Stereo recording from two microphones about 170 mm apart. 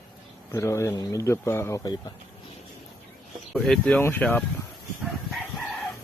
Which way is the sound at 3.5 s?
Centre (ahead or behind).